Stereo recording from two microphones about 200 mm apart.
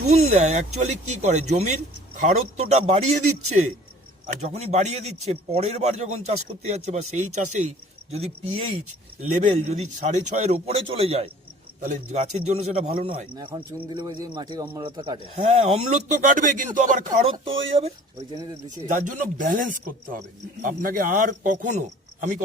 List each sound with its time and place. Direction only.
0.1 s speech: 35° right (ahead or behind)
12.5 s a man's voice: 35° right (ahead or behind)
15.4 s speech: 35° right (ahead or behind)
17.3 s a man's voice: 25° right (ahead or behind)
18.9 s speech: 40° right (ahead or behind)